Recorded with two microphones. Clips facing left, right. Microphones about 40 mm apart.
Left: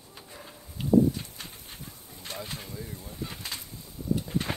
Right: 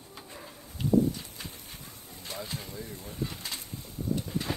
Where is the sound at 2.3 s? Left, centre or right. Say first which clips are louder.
Even; left.